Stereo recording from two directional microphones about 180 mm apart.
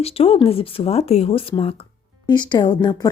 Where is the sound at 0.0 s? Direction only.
35° left (ahead or behind).